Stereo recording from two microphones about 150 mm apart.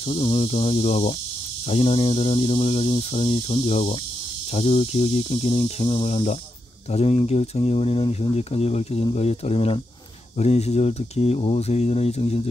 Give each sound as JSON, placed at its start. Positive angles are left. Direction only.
{"t": 0.1, "sound": "speech", "side_deg": 40}